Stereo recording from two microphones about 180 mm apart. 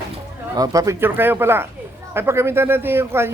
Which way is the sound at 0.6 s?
20° right (ahead or behind).